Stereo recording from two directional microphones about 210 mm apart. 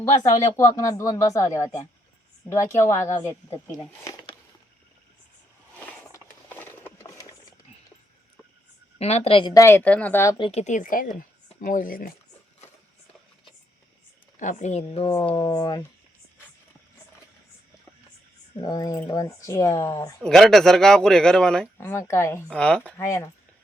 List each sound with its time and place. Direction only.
0.5 s speech: 15° left (ahead or behind)
5.8 s a sound: 10° left (ahead or behind)
9.0 s speech: 30° left (ahead or behind); by 10.3 s 10° left (ahead or behind)
10.3 s speech: 25° left (ahead or behind); by 12.1 s 40° left (ahead or behind)
14.3 s speech: 35° left (ahead or behind); by 15.9 s 20° left (ahead or behind)
18.5 s speech: 20° left (ahead or behind)
20.2 s speech: centre (ahead or behind)